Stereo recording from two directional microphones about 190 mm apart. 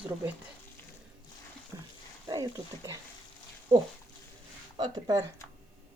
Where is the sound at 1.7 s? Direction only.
15° right (ahead or behind).